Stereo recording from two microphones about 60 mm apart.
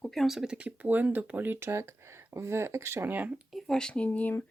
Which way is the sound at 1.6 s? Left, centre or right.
Right.